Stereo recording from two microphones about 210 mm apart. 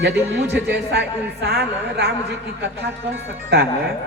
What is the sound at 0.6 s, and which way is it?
Speech, 50° right (ahead or behind).